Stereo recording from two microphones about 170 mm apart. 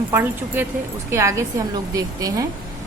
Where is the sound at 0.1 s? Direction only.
10° right (ahead or behind).